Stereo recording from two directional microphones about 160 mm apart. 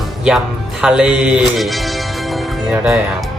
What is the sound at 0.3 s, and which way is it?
Speech, 5° right (ahead or behind).